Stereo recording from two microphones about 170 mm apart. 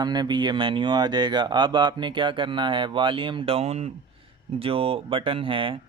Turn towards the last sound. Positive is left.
turn(degrees=-30)  # may be behind; listen again after turning